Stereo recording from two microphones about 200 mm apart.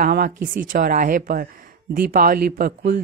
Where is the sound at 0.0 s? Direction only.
45° right (ahead or behind).